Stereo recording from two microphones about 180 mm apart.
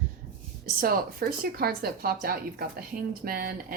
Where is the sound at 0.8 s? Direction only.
55° right (ahead or behind).